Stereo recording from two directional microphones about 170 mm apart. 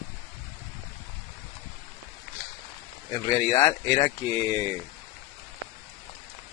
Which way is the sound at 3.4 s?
20° left (ahead or behind).